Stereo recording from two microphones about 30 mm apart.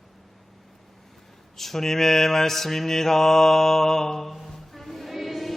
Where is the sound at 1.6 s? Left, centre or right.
Centre.